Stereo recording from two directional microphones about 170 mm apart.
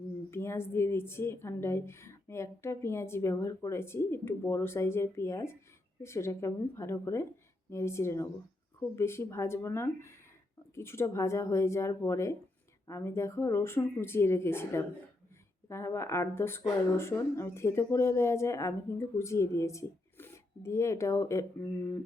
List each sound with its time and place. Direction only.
0.3 s speech: 15° left (ahead or behind)